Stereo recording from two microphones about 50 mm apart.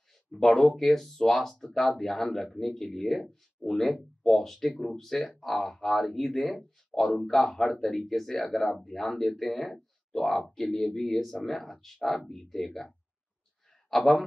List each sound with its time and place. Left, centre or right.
0.3 s speech: centre
9.3 s speech: centre
9.6 s speech: centre
13.8 s speech: centre